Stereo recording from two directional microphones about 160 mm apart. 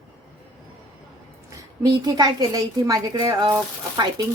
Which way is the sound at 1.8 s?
25° right (ahead or behind).